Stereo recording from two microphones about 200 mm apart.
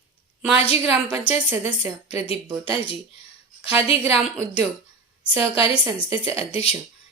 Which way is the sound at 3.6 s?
10° right (ahead or behind).